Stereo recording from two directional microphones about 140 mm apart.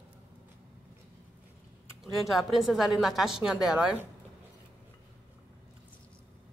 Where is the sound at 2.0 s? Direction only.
Centre (ahead or behind).